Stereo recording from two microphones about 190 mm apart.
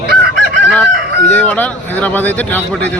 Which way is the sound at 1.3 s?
10° left (ahead or behind).